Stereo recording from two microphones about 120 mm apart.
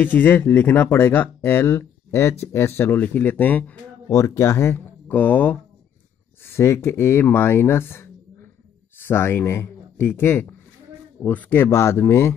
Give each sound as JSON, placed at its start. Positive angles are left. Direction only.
{"t": 0.0, "sound": "speech", "side_deg": 15}
{"t": 4.1, "sound": "speech", "side_deg": 25}